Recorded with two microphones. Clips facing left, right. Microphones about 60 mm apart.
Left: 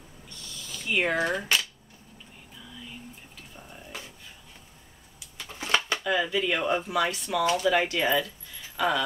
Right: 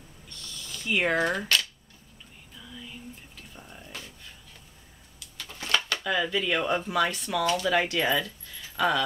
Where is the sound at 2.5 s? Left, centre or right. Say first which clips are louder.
Right 1 dB; centre.